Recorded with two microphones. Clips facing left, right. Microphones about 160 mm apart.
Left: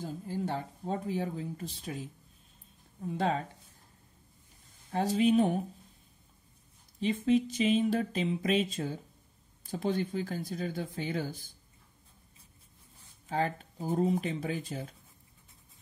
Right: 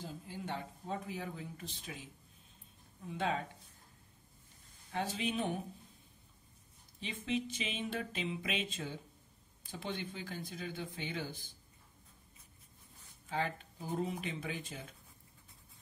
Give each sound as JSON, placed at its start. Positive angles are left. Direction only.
{"t": 0.0, "sound": "speech", "side_deg": 40}
{"t": 3.1, "sound": "speech", "side_deg": 40}
{"t": 4.9, "sound": "speech", "side_deg": 40}
{"t": 7.0, "sound": "speech", "side_deg": 40}
{"t": 13.3, "sound": "speech", "side_deg": 40}